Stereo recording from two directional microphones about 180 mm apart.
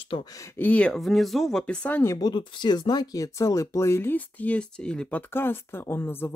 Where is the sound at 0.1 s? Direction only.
25° left (ahead or behind).